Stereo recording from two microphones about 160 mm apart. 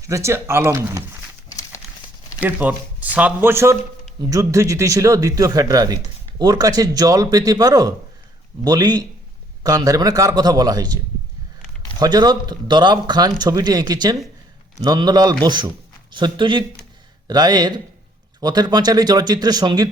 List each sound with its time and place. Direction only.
0.0 s speech: 20° right (ahead or behind)
1.5 s horse: 20° left (ahead or behind)
2.4 s speech: 10° right (ahead or behind)
11.9 s speech: 25° right (ahead or behind)